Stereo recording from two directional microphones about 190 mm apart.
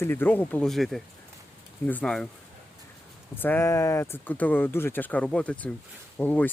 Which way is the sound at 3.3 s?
10° left (ahead or behind).